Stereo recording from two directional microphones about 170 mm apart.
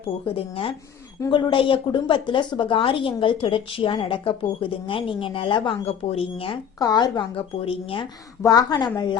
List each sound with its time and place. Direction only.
0.0 s a woman's voice: 35° left (ahead or behind)
6.7 s speech: 20° left (ahead or behind)
8.4 s speech: 20° left (ahead or behind)